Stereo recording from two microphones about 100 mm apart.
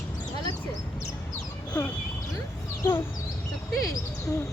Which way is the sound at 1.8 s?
25° left (ahead or behind).